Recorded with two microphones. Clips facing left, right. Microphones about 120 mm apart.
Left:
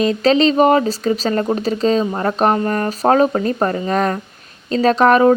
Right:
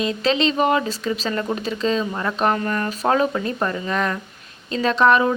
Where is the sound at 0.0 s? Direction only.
40° left (ahead or behind).